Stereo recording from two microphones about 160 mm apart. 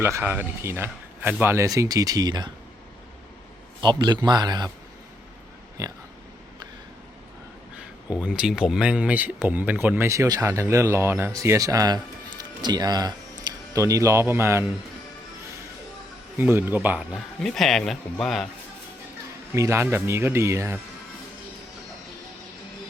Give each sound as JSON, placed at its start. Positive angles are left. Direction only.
{"t": 0.0, "sound": "speech", "side_deg": -15}
{"t": 3.8, "sound": "a man's voice", "side_deg": -30}
{"t": 5.8, "sound": "a man's voice", "side_deg": -20}
{"t": 8.2, "sound": "speech", "side_deg": -5}
{"t": 16.4, "sound": "speech", "side_deg": -15}
{"t": 17.4, "sound": "speech", "side_deg": 0}
{"t": 19.5, "sound": "speech", "side_deg": -15}